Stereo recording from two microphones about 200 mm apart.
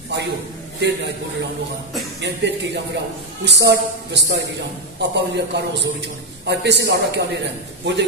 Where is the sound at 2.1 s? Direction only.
60° right (ahead or behind).